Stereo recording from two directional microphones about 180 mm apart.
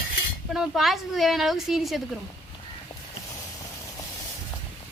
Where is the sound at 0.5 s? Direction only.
Centre (ahead or behind).